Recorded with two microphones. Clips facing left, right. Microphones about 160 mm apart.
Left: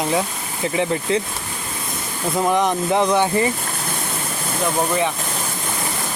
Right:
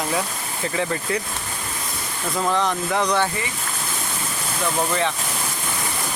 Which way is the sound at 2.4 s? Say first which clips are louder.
Left 3 dB; 20° left (ahead or behind).